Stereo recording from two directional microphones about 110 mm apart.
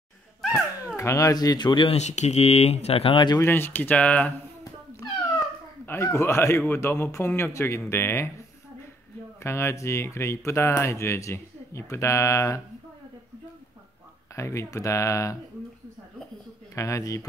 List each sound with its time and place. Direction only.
0.9 s speech: 30° left (ahead or behind)
1.9 s speech: 90° left; by 3.3 s 50° left (ahead or behind)
3.3 s speech: 20° left (ahead or behind)
5.4 s babbling: 20° left (ahead or behind)
6.0 s speech: 25° left (ahead or behind)
9.4 s speech: 25° left (ahead or behind)
14.3 s speech: 25° left (ahead or behind)
16.7 s speech: 30° left (ahead or behind)